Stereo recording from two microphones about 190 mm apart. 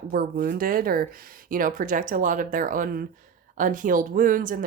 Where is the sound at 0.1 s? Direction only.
45° right (ahead or behind).